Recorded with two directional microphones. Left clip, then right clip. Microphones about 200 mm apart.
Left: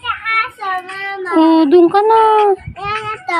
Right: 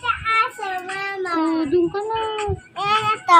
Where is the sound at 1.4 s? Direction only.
60° left (ahead or behind).